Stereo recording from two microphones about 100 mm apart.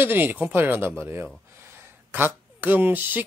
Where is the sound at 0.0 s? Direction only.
20° right (ahead or behind).